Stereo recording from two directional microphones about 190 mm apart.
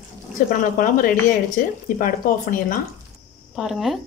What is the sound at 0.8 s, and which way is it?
Speech, 45° left (ahead or behind).